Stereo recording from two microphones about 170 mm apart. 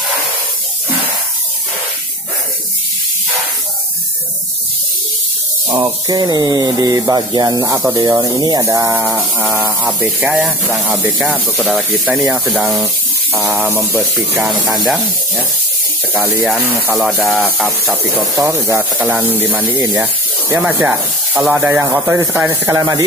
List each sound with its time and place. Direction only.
5.7 s speech: 20° right (ahead or behind)
16.1 s speech: 10° right (ahead or behind)
16.9 s speech: centre (ahead or behind)
18.4 s speech: 15° right (ahead or behind)